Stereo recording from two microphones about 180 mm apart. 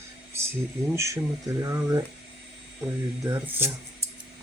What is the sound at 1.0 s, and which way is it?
Speech, 15° right (ahead or behind).